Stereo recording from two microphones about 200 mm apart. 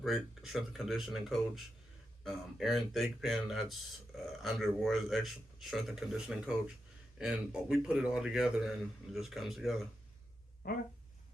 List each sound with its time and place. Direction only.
0.0 s a man's voice: centre (ahead or behind)
10.6 s speech: 50° left (ahead or behind)